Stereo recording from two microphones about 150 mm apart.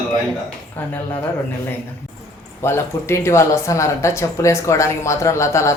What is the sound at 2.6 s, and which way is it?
Speech, 15° left (ahead or behind).